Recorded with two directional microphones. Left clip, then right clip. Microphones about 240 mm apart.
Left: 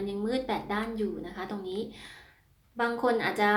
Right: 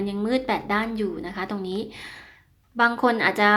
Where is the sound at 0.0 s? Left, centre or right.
Right.